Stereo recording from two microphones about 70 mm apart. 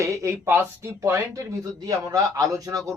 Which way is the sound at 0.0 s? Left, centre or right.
Right.